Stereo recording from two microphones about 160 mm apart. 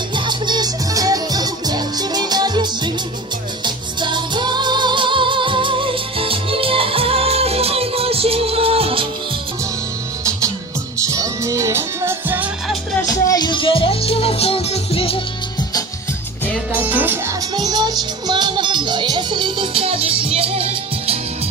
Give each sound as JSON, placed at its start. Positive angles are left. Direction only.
{"t": 0.1, "sound": "music", "side_deg": -30}
{"t": 11.0, "sound": "music", "side_deg": -20}
{"t": 13.1, "sound": "music", "side_deg": 20}
{"t": 16.7, "sound": "music", "side_deg": -10}
{"t": 17.5, "sound": "music", "side_deg": -25}